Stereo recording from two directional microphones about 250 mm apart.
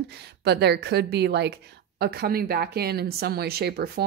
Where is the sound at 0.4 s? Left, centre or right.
Right.